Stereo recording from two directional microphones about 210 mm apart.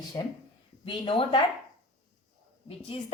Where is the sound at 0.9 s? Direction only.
25° left (ahead or behind).